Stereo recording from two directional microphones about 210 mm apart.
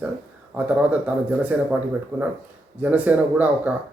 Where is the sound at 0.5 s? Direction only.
5° right (ahead or behind).